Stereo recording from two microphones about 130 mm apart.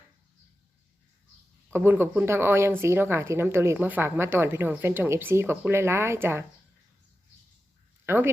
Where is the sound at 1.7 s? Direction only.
15° right (ahead or behind).